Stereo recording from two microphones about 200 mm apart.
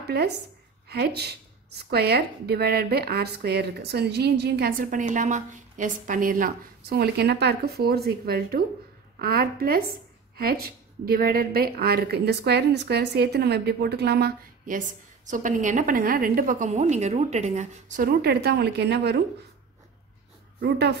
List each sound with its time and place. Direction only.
0.0 s a sound: 55° right (ahead or behind)
0.8 s a woman's voice: 55° right (ahead or behind)
20.6 s speech: 55° right (ahead or behind)